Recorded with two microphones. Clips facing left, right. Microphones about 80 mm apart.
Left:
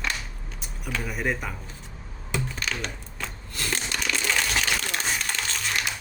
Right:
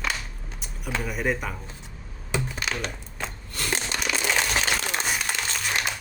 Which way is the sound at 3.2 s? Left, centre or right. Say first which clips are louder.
Right 2 dB; right.